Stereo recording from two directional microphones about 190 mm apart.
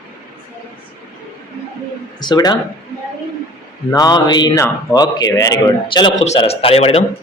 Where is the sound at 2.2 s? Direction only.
20° left (ahead or behind).